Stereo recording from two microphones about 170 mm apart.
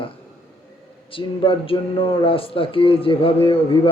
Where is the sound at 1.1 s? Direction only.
30° left (ahead or behind).